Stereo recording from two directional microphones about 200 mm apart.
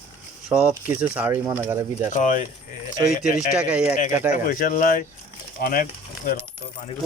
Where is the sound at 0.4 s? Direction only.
5° right (ahead or behind).